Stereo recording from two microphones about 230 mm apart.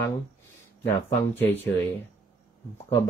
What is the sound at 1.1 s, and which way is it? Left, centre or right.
Speech, centre.